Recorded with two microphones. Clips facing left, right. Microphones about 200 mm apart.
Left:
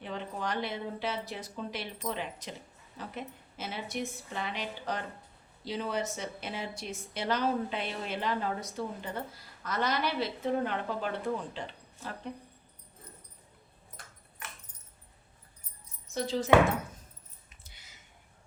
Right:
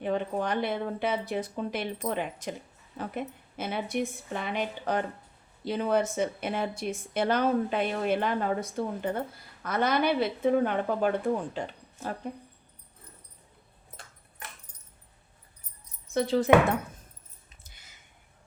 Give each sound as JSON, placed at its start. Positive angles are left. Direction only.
{"t": 0.0, "sound": "a woman's voice", "side_deg": -55}
{"t": 16.1, "sound": "a woman's voice", "side_deg": -60}
{"t": 17.6, "sound": "a sound", "side_deg": -50}